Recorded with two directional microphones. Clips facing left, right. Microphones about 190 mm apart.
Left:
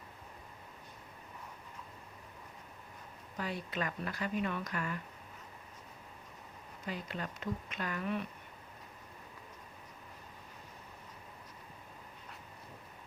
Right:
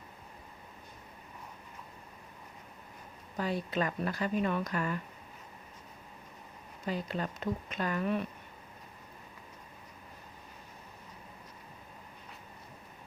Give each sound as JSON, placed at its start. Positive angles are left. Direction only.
{"t": 3.3, "sound": "speech", "side_deg": -35}
{"t": 6.8, "sound": "speech", "side_deg": -35}